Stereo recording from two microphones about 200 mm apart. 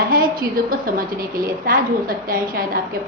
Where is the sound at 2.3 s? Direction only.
45° right (ahead or behind).